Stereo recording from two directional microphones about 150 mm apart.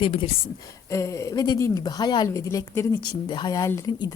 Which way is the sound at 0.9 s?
20° left (ahead or behind).